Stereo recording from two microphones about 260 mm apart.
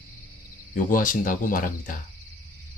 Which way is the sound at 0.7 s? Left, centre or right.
Left.